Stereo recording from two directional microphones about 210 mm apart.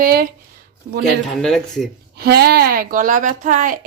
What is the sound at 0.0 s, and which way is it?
Speech, 45° right (ahead or behind).